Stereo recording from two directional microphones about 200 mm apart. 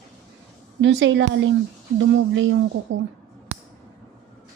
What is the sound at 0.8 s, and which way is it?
A woman's voice, 65° right (ahead or behind).